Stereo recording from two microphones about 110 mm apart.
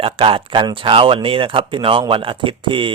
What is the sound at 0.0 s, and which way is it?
Speech, 55° right (ahead or behind).